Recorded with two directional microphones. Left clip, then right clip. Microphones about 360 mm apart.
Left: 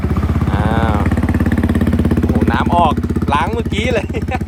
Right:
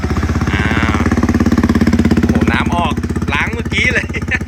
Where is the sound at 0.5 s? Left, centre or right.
Centre.